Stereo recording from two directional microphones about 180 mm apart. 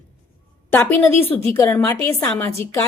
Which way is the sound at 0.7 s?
10° left (ahead or behind).